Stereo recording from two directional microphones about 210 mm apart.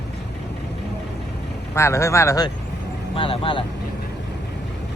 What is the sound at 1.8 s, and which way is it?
Speech, 15° left (ahead or behind).